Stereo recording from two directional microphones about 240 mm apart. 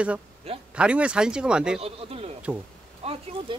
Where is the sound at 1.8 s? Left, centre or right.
Right.